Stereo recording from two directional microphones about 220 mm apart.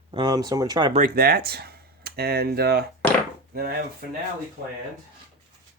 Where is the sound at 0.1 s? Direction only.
20° right (ahead or behind).